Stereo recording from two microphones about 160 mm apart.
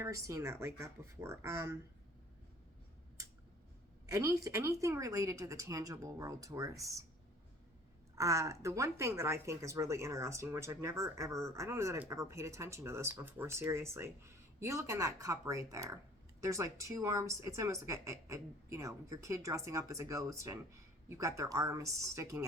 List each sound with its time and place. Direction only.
0.0 s speech: 20° right (ahead or behind)
4.0 s a woman's voice: 20° right (ahead or behind)
8.1 s speech: 20° right (ahead or behind)